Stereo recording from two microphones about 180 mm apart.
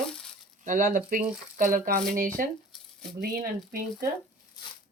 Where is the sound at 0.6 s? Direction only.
45° right (ahead or behind).